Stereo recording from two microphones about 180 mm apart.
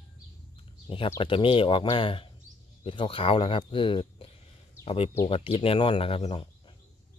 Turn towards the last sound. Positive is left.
turn(degrees=30)  # may be behind; listen again after turning